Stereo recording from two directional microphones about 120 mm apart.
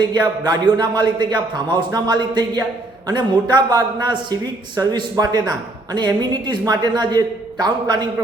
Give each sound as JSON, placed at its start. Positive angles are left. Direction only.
{"t": 0.0, "sound": "a man's voice", "side_deg": -40}